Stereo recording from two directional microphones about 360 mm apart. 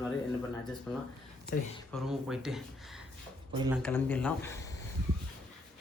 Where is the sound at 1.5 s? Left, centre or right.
Left.